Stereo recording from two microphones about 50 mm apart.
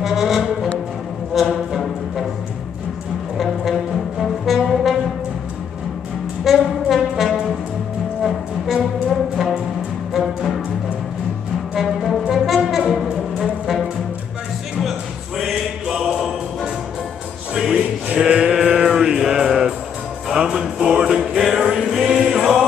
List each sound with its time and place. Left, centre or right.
0.0 s brass instrument: centre
1.3 s music: centre
3.3 s brass instrument: centre
6.4 s brass instrument: centre
9.1 s music: centre
11.7 s music: centre
18.0 s chant: right
18.8 s music: centre
21.4 s music: centre